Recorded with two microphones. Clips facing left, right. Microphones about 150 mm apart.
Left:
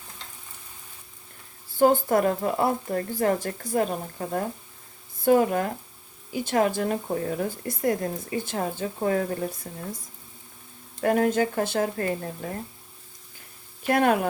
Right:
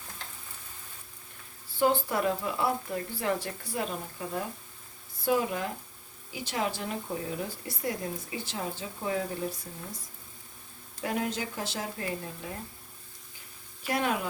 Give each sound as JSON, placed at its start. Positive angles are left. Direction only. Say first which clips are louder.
{"t": 1.7, "sound": "speech", "louder": "left 7 dB", "side_deg": 45}
{"t": 11.0, "sound": "speech", "louder": "left 10 dB", "side_deg": 50}
{"t": 13.8, "sound": "speech", "louder": "left 8 dB", "side_deg": 55}